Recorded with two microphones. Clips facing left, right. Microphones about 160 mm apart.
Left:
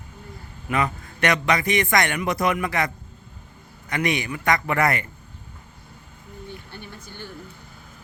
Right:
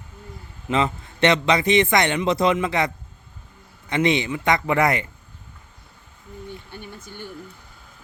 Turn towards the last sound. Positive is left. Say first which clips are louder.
# right 2 dB
turn(degrees=-15)  # may be behind; listen again after turning